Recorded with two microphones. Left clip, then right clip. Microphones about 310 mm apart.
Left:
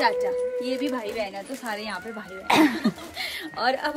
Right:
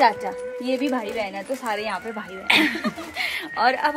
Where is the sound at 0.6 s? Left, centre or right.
Centre.